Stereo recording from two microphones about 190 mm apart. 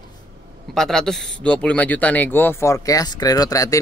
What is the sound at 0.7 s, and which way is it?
Speech, centre (ahead or behind).